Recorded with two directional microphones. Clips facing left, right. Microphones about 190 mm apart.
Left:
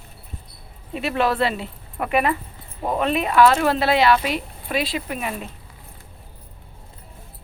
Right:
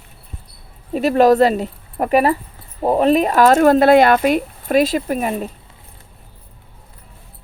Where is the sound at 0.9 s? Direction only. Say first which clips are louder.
Right 10 dB; 40° right (ahead or behind).